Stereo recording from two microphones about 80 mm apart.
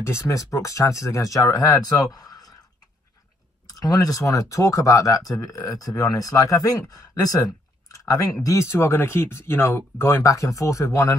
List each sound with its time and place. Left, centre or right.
0.0 s speech: left
3.6 s speech: left
8.5 s speech: left